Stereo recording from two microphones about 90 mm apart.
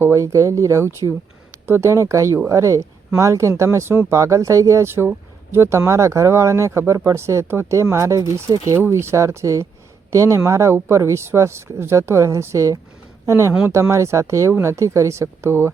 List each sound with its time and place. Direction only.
0.0 s speech: 30° right (ahead or behind)
8.7 s speech: 30° right (ahead or behind)